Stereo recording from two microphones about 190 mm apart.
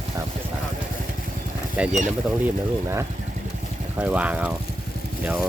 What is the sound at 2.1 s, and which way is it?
Speech, 10° right (ahead or behind).